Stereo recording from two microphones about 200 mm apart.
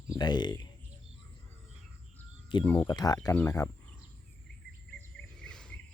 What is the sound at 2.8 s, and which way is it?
Speech, 20° left (ahead or behind).